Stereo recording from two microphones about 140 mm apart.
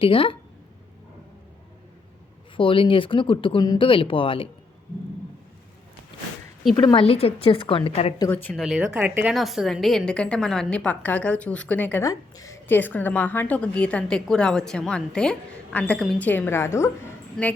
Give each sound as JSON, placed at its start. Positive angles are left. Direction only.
{"t": 0.0, "sound": "speech", "side_deg": 40}
{"t": 2.6, "sound": "speech", "side_deg": 40}
{"t": 6.7, "sound": "speech", "side_deg": 35}
{"t": 8.3, "sound": "a woman's voice", "side_deg": 15}
{"t": 8.5, "sound": "speech", "side_deg": 0}
{"t": 9.3, "sound": "a woman's voice", "side_deg": 0}
{"t": 12.0, "sound": "a woman's voice", "side_deg": 25}
{"t": 17.4, "sound": "a woman's voice", "side_deg": 5}